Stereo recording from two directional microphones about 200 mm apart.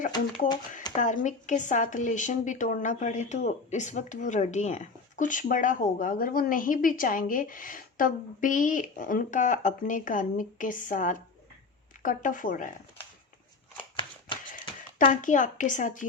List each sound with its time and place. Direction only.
0.1 s speech: 20° left (ahead or behind)
0.9 s speech: 40° left (ahead or behind)
15.1 s speech: 40° left (ahead or behind)